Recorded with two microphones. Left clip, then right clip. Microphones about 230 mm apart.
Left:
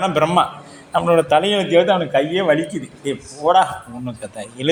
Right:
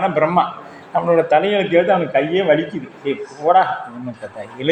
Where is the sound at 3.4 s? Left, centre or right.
Left.